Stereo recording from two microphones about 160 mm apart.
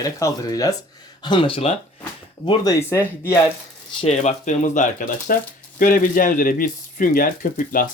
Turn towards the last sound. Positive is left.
turn(degrees=60)  # may be behind; listen again after turning